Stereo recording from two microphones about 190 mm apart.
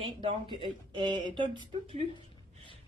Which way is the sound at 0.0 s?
25° right (ahead or behind).